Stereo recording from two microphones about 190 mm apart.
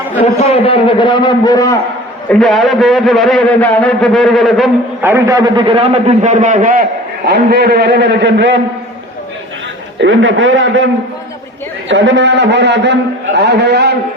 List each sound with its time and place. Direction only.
0.2 s a man's voice: 30° left (ahead or behind)
2.3 s a man's voice: centre (ahead or behind)
5.0 s a man's voice: 15° right (ahead or behind); by 6.8 s 45° right (ahead or behind)
7.3 s a man's voice: 60° right (ahead or behind)
10.0 s a man's voice: 90° right
11.9 s a man's voice: 70° right (ahead or behind)